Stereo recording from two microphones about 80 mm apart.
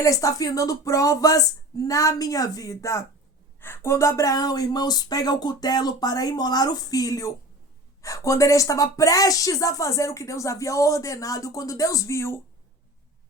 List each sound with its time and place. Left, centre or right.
0.0 s speech: left